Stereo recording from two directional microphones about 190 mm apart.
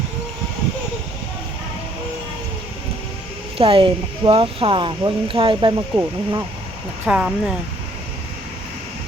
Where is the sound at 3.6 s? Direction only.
25° right (ahead or behind).